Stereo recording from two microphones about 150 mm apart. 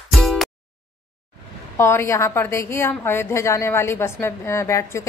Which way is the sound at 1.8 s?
15° left (ahead or behind).